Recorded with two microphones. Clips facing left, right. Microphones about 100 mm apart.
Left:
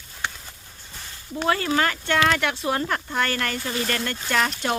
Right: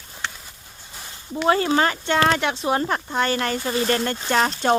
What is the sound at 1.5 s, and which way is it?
Speech, 25° right (ahead or behind).